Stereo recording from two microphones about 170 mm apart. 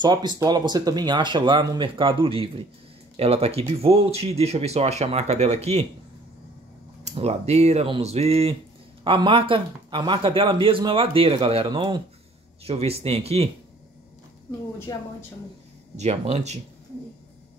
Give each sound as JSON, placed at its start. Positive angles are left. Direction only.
{"t": 0.0, "sound": "a man's voice", "side_deg": -25}
{"t": 7.1, "sound": "a man's voice", "side_deg": -40}
{"t": 14.9, "sound": "a woman's voice", "side_deg": 20}
{"t": 16.0, "sound": "a man's voice", "side_deg": -40}